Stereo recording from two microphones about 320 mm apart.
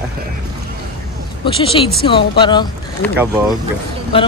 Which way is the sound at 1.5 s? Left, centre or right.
Centre.